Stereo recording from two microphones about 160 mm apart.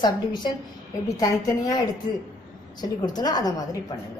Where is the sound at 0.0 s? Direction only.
25° left (ahead or behind).